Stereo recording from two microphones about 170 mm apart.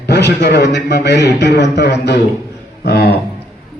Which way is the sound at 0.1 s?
85° left.